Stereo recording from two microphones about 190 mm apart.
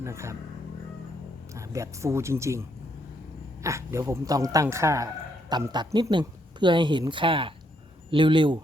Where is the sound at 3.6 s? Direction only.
15° right (ahead or behind).